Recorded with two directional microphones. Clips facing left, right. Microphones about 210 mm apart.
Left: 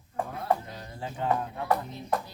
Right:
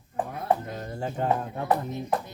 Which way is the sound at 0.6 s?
50° right (ahead or behind).